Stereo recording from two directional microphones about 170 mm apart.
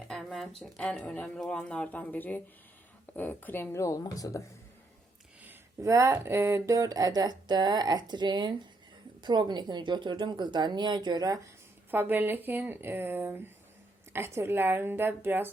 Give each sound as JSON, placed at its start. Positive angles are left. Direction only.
{"t": 0.1, "sound": "speech", "side_deg": 0}
{"t": 5.5, "sound": "a sound", "side_deg": -15}
{"t": 11.9, "sound": "speech", "side_deg": -10}